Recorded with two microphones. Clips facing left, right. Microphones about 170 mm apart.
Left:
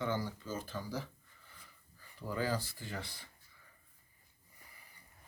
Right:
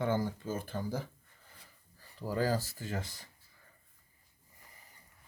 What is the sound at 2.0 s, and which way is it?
Speech, 40° right (ahead or behind).